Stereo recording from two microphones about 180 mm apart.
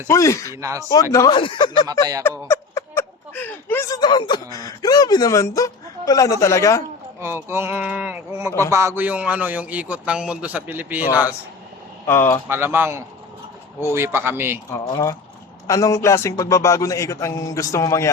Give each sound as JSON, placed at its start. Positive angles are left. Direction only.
{"t": 0.1, "sound": "a man's voice", "side_deg": 15}
{"t": 0.6, "sound": "a man's voice", "side_deg": -20}
{"t": 1.1, "sound": "speech", "side_deg": 20}
{"t": 1.9, "sound": "speech", "side_deg": -20}
{"t": 2.5, "sound": "speech", "side_deg": 15}
{"t": 7.2, "sound": "a man's voice", "side_deg": -15}
{"t": 12.0, "sound": "a man's voice", "side_deg": 15}
{"t": 12.5, "sound": "a man's voice", "side_deg": -10}
{"t": 14.7, "sound": "a man's voice", "side_deg": 20}